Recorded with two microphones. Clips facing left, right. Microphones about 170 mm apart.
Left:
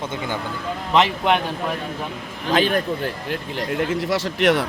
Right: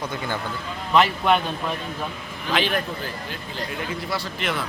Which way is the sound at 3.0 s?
65° left (ahead or behind).